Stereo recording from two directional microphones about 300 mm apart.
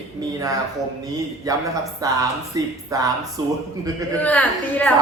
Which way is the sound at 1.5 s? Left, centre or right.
Centre.